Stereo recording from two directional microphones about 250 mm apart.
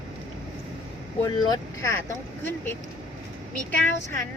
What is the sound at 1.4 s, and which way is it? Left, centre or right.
Speech, centre.